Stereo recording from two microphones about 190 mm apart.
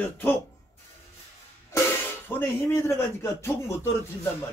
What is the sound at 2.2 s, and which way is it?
Speech, 10° left (ahead or behind).